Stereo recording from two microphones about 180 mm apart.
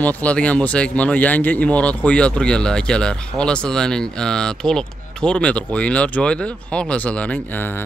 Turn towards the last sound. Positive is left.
turn(degrees=10)  # may be behind; listen again after turning